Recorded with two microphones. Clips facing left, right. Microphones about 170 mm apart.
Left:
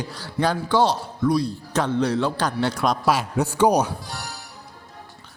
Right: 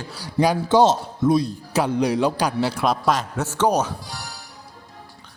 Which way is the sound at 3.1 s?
10° left (ahead or behind).